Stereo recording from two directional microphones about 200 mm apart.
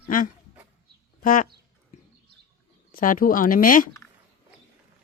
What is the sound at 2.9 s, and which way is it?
Speech, 40° left (ahead or behind).